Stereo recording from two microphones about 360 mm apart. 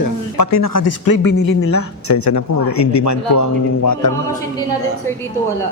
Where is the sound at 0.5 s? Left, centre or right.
Left.